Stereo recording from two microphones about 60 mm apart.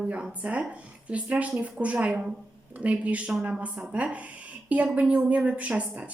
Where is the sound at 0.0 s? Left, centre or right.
Right.